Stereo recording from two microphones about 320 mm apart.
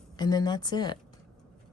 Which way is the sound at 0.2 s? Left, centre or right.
Centre.